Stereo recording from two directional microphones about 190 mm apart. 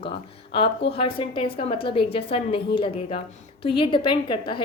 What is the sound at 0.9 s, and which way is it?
A woman's voice, 30° left (ahead or behind).